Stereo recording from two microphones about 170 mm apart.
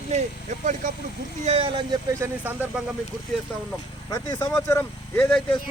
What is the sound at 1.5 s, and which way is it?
Speech, 35° right (ahead or behind).